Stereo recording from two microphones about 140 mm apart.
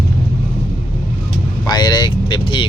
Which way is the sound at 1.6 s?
30° left (ahead or behind).